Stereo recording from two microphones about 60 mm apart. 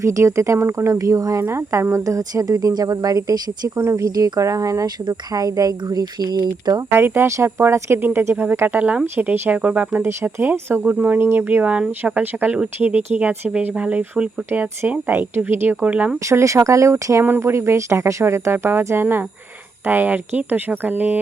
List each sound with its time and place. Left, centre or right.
0.0 s speech: right
1.5 s speech: right
3.8 s speech: right
5.3 s speech: right
6.9 s speech: right
8.4 s speech: right
9.3 s speech: right
9.6 s speech: right
10.0 s speech: right
15.8 s speech: right
16.1 s speech: right